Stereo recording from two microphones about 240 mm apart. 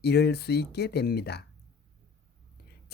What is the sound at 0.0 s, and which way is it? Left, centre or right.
Speech, left.